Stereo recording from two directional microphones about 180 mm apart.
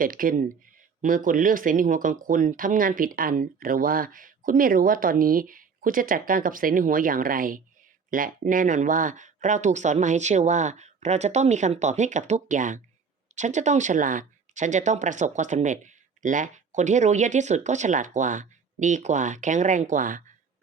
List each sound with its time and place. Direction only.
0.0 s speech: 50° right (ahead or behind)